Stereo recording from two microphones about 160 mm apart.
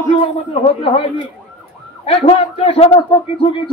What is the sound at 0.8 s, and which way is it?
Speech, 35° left (ahead or behind).